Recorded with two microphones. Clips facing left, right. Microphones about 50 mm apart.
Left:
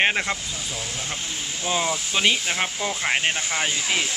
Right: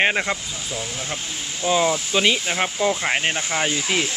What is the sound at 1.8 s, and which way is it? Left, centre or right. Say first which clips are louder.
Speech: right 2 dB; centre.